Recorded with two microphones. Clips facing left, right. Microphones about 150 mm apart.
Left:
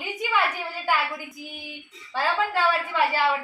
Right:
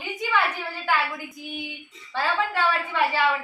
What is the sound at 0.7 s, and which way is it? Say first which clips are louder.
Hands: even; centre (ahead or behind).